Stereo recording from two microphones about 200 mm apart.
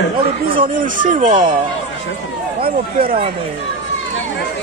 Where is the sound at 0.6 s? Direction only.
40° right (ahead or behind).